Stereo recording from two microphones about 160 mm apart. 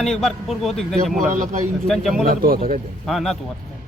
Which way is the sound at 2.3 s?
70° right (ahead or behind).